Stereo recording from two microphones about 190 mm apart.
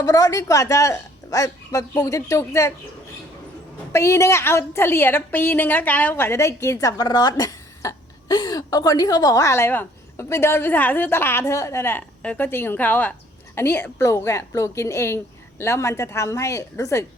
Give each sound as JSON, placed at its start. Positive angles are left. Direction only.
{"t": 0.0, "sound": "a woman's voice", "side_deg": 20}
{"t": 3.9, "sound": "a woman's voice", "side_deg": 15}